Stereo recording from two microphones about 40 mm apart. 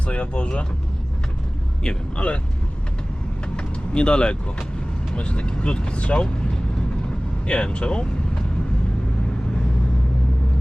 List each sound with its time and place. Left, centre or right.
0.0 s speech: left
2.1 s speech: left
3.6 s vehicle: left
5.1 s speech: left
7.4 s speech: left